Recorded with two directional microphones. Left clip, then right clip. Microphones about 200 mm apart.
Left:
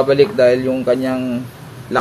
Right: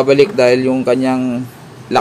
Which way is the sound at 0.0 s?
50° right (ahead or behind).